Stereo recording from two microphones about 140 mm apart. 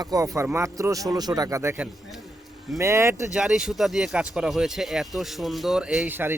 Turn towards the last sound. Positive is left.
turn(degrees=-15)  # may be behind; listen again after turning